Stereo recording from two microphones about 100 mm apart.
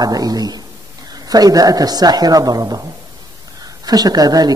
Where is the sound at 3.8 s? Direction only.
40° right (ahead or behind).